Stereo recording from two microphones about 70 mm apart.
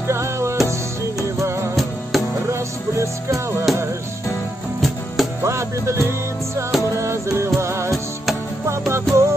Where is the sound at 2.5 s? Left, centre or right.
Right.